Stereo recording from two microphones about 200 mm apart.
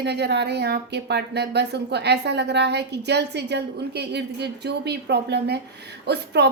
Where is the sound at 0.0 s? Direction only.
55° right (ahead or behind).